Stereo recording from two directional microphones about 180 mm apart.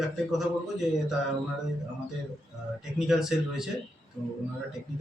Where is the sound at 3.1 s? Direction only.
5° right (ahead or behind).